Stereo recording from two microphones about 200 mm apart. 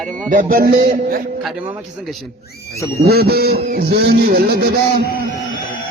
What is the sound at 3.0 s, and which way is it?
Music, 50° right (ahead or behind).